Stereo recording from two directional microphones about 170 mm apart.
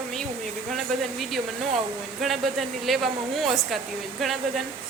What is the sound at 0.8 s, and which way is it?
A woman's voice, centre (ahead or behind).